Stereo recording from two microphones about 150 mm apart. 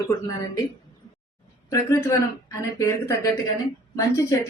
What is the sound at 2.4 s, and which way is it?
Speech, 20° left (ahead or behind).